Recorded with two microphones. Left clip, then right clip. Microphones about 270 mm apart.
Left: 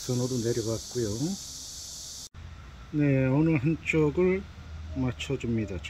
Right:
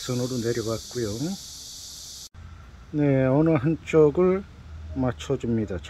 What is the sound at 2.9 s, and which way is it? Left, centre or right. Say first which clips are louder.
Speech: right 5 dB; centre.